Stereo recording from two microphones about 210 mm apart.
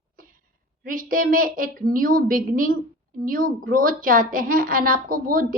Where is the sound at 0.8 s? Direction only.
40° right (ahead or behind).